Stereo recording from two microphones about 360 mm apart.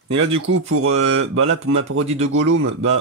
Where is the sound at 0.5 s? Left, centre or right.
Right.